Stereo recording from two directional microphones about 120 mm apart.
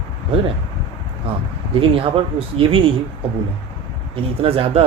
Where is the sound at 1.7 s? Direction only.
50° right (ahead or behind).